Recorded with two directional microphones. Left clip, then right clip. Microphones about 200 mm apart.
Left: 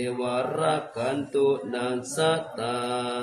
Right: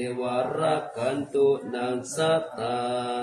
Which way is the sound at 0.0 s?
25° left (ahead or behind).